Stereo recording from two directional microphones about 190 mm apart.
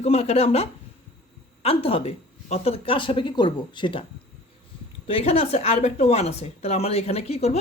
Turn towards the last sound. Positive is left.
turn(degrees=35)  # may be behind; listen again after turning